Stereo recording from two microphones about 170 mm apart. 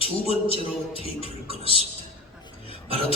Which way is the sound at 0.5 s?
35° left (ahead or behind).